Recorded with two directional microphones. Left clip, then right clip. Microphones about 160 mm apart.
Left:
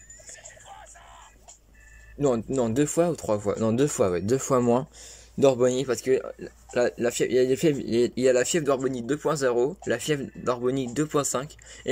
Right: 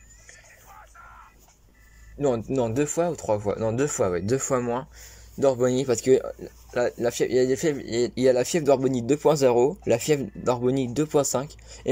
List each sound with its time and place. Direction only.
2.1 s speech: 5° left (ahead or behind)
5.7 s speech: centre (ahead or behind)